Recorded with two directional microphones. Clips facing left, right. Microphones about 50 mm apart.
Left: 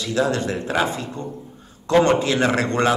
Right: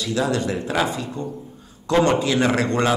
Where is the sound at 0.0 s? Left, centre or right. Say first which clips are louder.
Left 1 dB; left.